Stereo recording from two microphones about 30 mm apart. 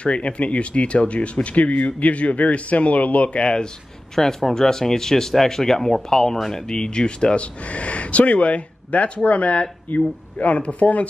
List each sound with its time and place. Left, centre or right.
0.0 s speech: left
4.1 s speech: centre; by 7.4 s left
7.7 s speech: left